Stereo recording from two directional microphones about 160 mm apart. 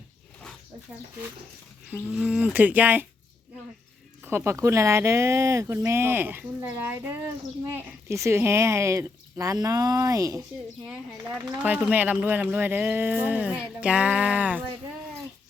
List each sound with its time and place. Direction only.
1.9 s speech: 5° right (ahead or behind)
4.2 s a woman's voice: 15° right (ahead or behind)
10.8 s speech: 10° right (ahead or behind)